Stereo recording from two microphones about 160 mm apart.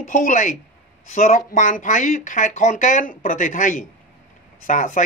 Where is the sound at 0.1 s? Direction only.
50° left (ahead or behind).